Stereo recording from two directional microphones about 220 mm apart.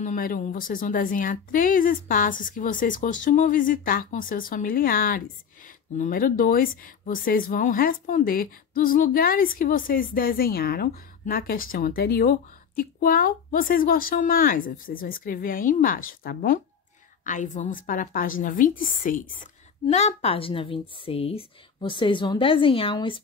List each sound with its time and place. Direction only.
0.0 s a woman's voice: 40° left (ahead or behind); by 23.2 s 25° left (ahead or behind)